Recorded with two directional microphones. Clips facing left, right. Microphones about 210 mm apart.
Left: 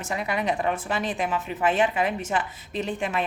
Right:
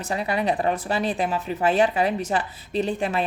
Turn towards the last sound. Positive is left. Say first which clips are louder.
# right 4 dB
turn(degrees=-35)  # may be behind; listen again after turning